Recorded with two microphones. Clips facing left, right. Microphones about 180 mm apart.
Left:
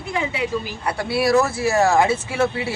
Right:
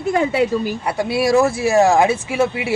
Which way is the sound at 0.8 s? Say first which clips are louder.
Right 1 dB; 20° right (ahead or behind).